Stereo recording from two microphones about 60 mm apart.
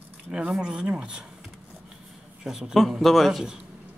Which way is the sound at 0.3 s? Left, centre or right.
Centre.